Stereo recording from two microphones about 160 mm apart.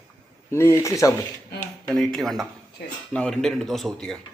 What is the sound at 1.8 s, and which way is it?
Speech, centre (ahead or behind).